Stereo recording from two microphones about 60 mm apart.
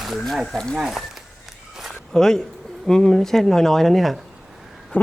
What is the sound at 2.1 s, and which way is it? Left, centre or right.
Speech, centre.